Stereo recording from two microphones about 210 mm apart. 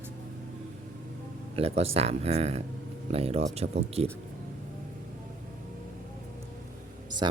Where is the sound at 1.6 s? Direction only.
30° right (ahead or behind).